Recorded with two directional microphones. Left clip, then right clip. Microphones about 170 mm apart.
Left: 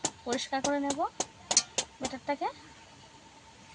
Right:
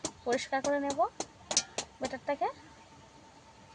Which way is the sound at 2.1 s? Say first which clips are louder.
Right 2 dB; 25° right (ahead or behind).